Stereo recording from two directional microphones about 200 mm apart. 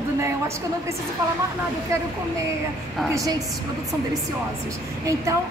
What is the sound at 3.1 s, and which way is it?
Speech, 15° right (ahead or behind).